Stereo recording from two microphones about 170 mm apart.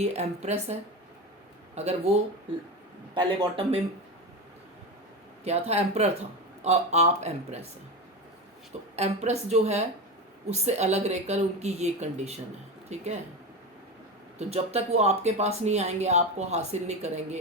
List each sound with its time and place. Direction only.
0.0 s speech: 40° right (ahead or behind)
3.2 s speech: 30° right (ahead or behind)
5.5 s speech: 40° right (ahead or behind)
9.0 s speech: 40° right (ahead or behind)
14.3 s speech: 35° right (ahead or behind)